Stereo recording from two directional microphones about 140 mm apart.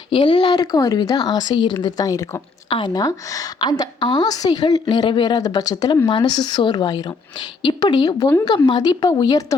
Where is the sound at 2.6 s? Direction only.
35° left (ahead or behind).